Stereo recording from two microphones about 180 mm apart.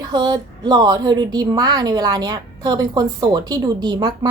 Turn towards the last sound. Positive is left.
turn(degrees=-25)  # may be behind; listen again after turning